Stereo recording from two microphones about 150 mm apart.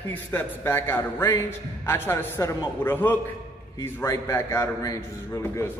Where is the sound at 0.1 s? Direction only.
15° left (ahead or behind).